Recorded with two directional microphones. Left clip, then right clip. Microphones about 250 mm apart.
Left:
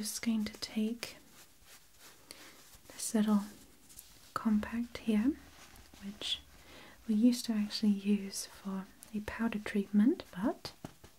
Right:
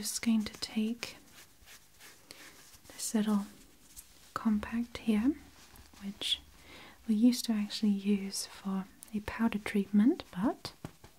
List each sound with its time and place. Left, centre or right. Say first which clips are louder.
0.0 s speech: right 3 dB; right
3.0 s speech: even; centre; by 10.7 s right